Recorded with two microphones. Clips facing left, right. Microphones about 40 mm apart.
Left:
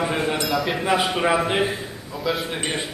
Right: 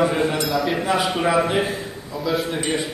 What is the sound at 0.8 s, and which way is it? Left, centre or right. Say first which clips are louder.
A man's voice: even; centre.